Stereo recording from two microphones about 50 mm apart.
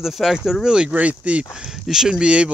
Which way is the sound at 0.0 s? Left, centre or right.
Centre.